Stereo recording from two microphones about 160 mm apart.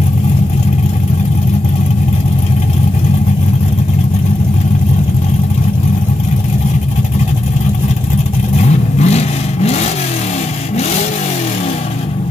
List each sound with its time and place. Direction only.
8.5 s vehicle: 45° left (ahead or behind)